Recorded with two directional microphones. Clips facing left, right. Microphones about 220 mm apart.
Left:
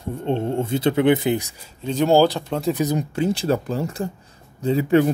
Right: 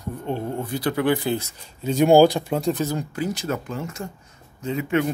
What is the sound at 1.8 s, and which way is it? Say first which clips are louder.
Speech: right 2 dB; 10° right (ahead or behind).